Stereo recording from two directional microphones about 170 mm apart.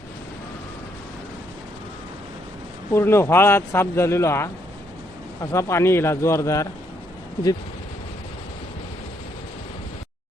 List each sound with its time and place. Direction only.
2.9 s speech: 15° left (ahead or behind)